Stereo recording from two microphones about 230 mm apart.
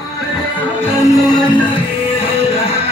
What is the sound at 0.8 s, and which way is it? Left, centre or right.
Music, centre.